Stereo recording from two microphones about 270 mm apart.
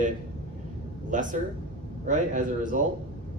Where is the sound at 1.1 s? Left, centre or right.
Right.